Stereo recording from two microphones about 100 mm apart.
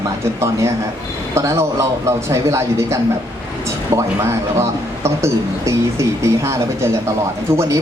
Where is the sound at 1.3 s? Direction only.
30° right (ahead or behind).